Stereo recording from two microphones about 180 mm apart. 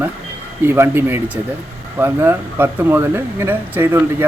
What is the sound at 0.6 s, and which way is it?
Speech, 10° right (ahead or behind).